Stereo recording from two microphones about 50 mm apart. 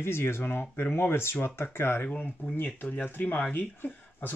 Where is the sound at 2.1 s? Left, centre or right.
Left.